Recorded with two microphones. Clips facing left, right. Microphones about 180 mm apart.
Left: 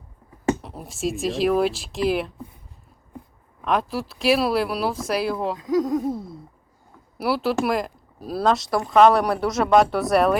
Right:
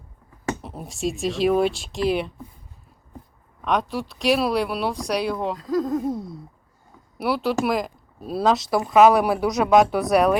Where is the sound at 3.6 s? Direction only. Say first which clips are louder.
Even; centre (ahead or behind).